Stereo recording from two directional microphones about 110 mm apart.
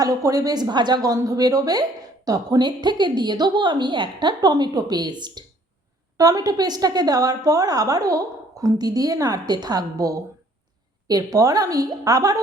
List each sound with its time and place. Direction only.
0.0 s a woman's voice: 30° right (ahead or behind)